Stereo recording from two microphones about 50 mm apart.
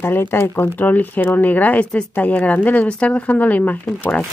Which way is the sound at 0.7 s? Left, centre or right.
Left.